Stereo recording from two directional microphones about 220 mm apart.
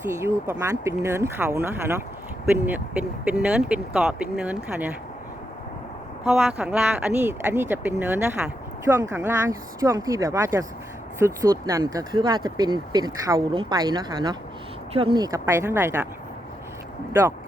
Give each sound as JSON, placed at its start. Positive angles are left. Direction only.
{"t": 0.0, "sound": "speech", "side_deg": -15}
{"t": 6.2, "sound": "speech", "side_deg": 0}
{"t": 17.1, "sound": "speech", "side_deg": -10}